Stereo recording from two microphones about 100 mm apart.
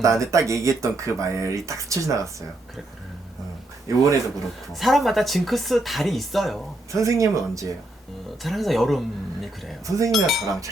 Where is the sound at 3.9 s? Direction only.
35° right (ahead or behind).